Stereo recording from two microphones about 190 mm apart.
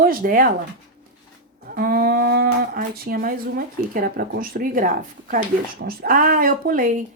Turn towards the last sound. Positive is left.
turn(degrees=-45)  # may be behind; listen again after turning